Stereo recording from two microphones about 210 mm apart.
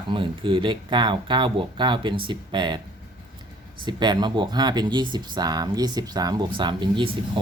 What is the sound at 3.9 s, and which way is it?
Speech, 20° right (ahead or behind).